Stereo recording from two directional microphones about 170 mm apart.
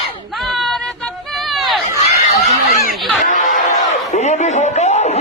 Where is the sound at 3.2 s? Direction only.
50° left (ahead or behind).